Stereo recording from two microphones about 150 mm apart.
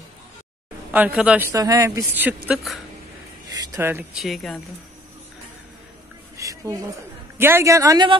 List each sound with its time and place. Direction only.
0.9 s a woman's voice: 10° right (ahead or behind)
1.5 s speech: 25° right (ahead or behind)
2.1 s a woman's voice: 10° right (ahead or behind)
3.4 s a sound: 25° right (ahead or behind)
3.7 s a woman's voice: 15° right (ahead or behind)
4.2 s speech: centre (ahead or behind)
6.3 s a sound: 20° right (ahead or behind)
7.3 s speech: 15° right (ahead or behind)